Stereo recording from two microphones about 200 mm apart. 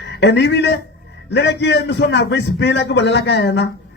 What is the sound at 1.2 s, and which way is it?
A man's voice, 60° left (ahead or behind).